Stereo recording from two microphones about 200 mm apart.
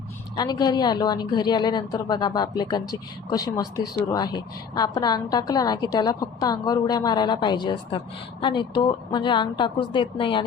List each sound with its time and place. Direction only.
0.3 s a woman's voice: 20° left (ahead or behind)